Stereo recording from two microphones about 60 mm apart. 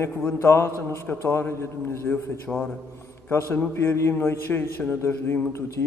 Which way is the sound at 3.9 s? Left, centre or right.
Left.